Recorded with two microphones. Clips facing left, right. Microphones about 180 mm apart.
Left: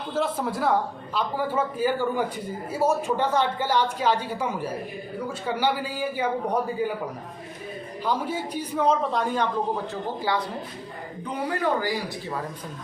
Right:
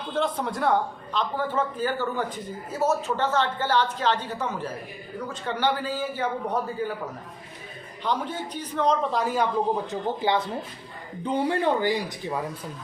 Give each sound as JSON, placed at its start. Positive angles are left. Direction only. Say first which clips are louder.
{"t": 0.1, "sound": "a man's voice", "louder": "even", "side_deg": 5}
{"t": 8.0, "sound": "a man's voice", "louder": "left 1 dB", "side_deg": 10}
{"t": 9.9, "sound": "speech", "louder": "right 2 dB", "side_deg": -20}